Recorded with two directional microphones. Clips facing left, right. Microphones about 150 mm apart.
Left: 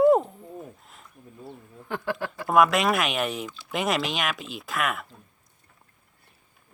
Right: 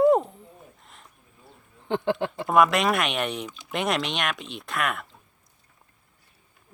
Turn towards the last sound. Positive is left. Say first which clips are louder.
# even
turn(degrees=0)  # may be behind; listen again after turning